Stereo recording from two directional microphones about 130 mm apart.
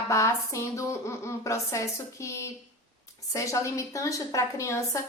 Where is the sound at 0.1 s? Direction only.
25° left (ahead or behind).